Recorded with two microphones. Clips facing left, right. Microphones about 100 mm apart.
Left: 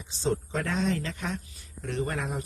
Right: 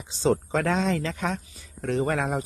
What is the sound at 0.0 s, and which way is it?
Speech, 90° right.